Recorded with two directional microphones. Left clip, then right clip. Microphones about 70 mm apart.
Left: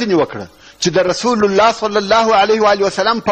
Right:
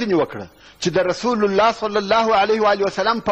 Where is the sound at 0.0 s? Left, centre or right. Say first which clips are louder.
Left 4 dB; right.